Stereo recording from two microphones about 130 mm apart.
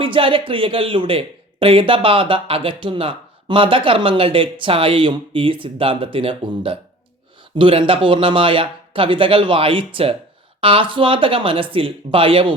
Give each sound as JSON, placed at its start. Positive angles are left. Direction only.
{"t": 0.0, "sound": "speech", "side_deg": -40}